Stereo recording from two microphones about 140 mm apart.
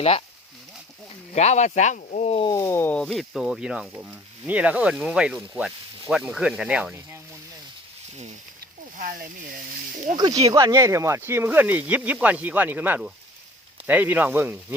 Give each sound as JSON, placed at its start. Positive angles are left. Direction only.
{"t": 1.3, "sound": "speech", "side_deg": 55}
{"t": 2.3, "sound": "a sound", "side_deg": 35}
{"t": 2.6, "sound": "speech", "side_deg": 15}
{"t": 9.0, "sound": "speech", "side_deg": -90}
{"t": 9.9, "sound": "snake", "side_deg": -65}
{"t": 10.2, "sound": "speech", "side_deg": -30}